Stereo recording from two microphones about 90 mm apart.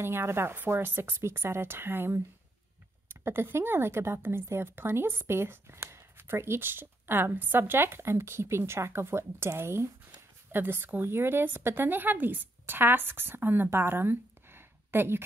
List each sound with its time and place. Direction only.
0.0 s a woman's voice: 25° right (ahead or behind)